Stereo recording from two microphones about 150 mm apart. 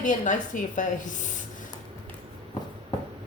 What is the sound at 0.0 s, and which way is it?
A woman's voice, 60° left (ahead or behind).